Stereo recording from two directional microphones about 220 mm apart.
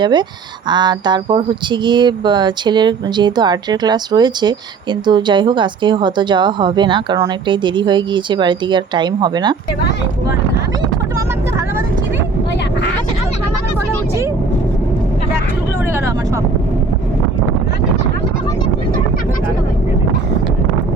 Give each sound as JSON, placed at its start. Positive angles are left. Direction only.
{"t": 0.0, "sound": "speech", "side_deg": -20}